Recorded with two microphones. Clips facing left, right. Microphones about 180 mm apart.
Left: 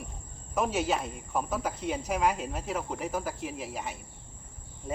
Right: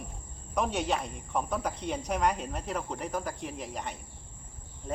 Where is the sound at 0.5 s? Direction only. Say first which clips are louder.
Left 1 dB; 5° left (ahead or behind).